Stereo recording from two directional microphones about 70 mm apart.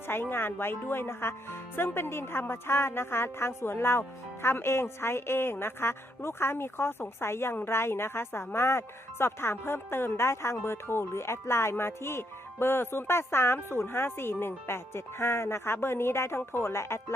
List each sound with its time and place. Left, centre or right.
0.1 s speech: left